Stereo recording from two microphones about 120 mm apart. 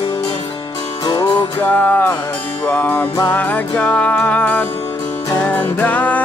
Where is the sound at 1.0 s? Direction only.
35° left (ahead or behind).